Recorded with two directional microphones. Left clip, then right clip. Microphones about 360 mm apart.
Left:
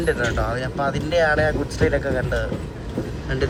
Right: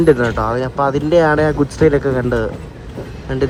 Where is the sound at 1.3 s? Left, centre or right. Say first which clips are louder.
Right 5 dB; right.